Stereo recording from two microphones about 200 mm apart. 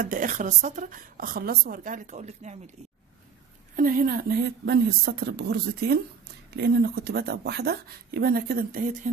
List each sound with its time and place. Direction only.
0.0 s a woman's voice: 45° right (ahead or behind)
3.7 s speech: 45° right (ahead or behind)